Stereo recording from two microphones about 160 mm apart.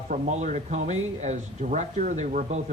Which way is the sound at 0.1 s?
50° right (ahead or behind).